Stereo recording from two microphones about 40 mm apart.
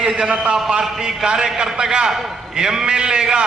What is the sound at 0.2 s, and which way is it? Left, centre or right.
A man's voice, right.